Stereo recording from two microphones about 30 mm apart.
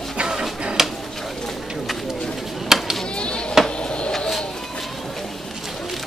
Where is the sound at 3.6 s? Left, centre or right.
Centre.